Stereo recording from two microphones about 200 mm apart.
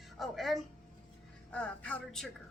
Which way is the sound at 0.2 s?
Centre (ahead or behind).